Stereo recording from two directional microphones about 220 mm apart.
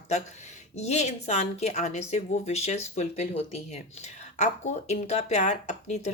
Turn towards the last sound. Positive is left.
turn(degrees=30)  # may be behind; listen again after turning